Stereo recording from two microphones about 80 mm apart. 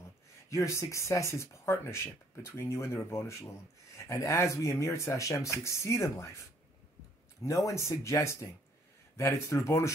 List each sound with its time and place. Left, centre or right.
0.5 s speech: left
7.4 s speech: left